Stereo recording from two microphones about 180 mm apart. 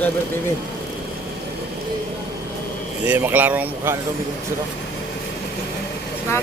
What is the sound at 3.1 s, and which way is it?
Speech, 10° right (ahead or behind).